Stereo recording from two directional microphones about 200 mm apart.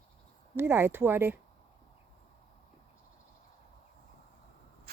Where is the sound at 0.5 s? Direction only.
10° right (ahead or behind).